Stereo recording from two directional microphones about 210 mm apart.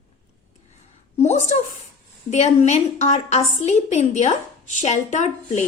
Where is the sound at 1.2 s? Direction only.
35° left (ahead or behind).